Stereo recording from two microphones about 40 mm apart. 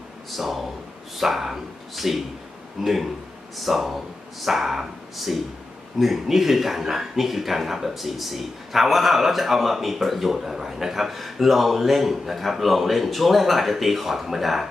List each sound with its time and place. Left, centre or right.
0.3 s speech: centre